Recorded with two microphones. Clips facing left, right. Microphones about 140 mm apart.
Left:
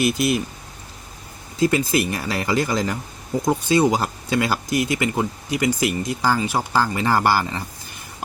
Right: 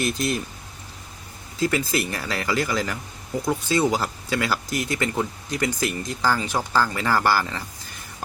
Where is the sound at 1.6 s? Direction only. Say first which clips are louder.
Left 4 dB; 20° left (ahead or behind).